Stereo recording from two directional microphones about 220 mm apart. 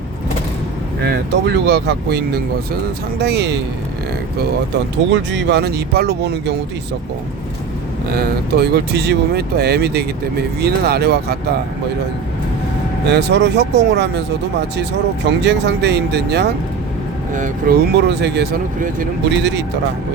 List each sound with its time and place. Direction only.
1.0 s speech: 50° right (ahead or behind)
5.1 s speech: 50° right (ahead or behind)
8.1 s speech: 45° right (ahead or behind)
13.1 s speech: 50° right (ahead or behind)
17.3 s speech: 40° right (ahead or behind)